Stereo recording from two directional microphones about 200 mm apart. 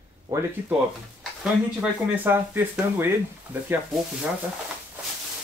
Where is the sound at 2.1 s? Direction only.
10° right (ahead or behind).